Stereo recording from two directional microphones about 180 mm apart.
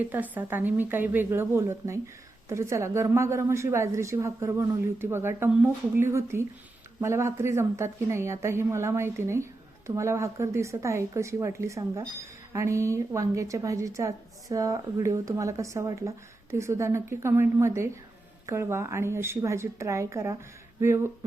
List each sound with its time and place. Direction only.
0.0 s a woman's voice: 10° right (ahead or behind)